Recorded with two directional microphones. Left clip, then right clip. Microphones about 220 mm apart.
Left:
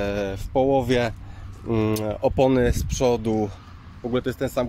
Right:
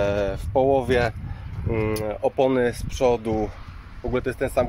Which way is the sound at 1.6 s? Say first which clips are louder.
Left 1 dB; 30° left (ahead or behind).